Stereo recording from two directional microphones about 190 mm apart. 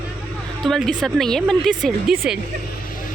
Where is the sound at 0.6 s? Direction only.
Centre (ahead or behind).